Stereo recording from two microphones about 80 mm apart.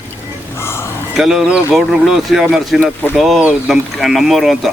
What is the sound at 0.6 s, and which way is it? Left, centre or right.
Speech, left.